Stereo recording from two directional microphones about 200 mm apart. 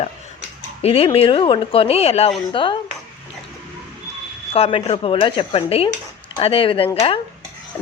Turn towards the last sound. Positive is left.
turn(degrees=30)  # may be behind; listen again after turning